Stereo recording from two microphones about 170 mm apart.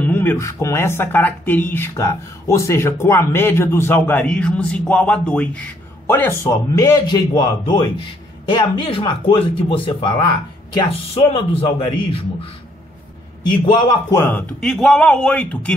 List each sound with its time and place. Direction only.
0.0 s a man's voice: 10° left (ahead or behind); by 11.4 s 30° left (ahead or behind)
13.5 s a man's voice: 25° left (ahead or behind)
14.2 s a man's voice: 10° left (ahead or behind)